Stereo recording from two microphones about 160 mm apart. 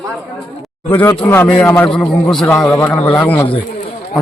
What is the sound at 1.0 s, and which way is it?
Speech, 10° left (ahead or behind).